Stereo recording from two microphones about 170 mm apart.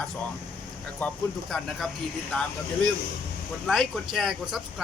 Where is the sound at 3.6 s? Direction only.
Centre (ahead or behind).